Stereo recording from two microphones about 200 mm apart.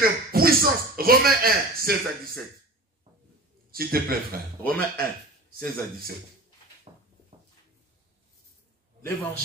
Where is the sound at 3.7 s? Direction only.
50° right (ahead or behind).